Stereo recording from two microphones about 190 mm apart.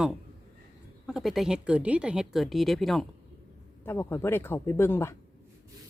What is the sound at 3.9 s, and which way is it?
Speech, 10° left (ahead or behind).